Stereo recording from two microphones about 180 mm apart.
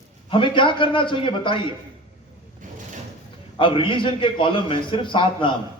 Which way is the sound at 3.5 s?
30° left (ahead or behind).